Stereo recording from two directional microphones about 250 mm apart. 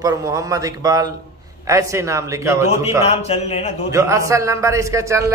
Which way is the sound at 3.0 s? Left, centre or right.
Left.